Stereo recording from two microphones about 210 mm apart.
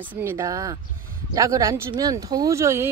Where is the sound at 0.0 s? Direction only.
10° right (ahead or behind).